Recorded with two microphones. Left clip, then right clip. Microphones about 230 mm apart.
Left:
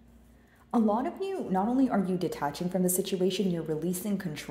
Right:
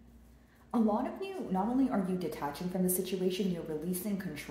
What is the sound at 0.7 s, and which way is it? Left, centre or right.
A woman's voice, left.